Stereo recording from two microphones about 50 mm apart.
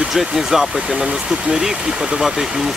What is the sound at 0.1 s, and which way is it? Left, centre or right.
Speech, centre.